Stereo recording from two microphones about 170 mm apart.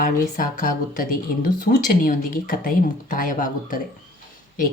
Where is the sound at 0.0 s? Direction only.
55° left (ahead or behind).